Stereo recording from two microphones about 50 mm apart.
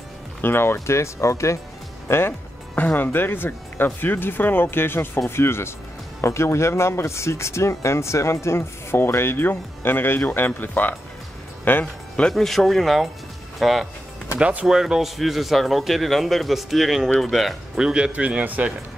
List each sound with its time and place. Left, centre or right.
0.4 s speech: left
2.0 s speech: left
2.7 s speech: left
6.2 s speech: left
11.8 s speech: centre
12.4 s speech: centre
14.4 s speech: right
14.7 s speech: centre
17.7 s speech: centre